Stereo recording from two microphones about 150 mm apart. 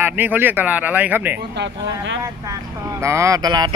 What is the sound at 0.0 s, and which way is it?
Speech, 10° right (ahead or behind).